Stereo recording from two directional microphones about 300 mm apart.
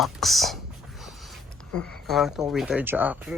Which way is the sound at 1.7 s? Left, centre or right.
Centre.